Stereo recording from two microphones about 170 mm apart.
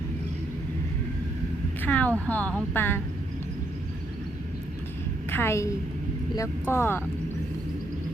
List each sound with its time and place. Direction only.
1.8 s speech: 10° left (ahead or behind)
5.3 s a woman's voice: 15° left (ahead or behind)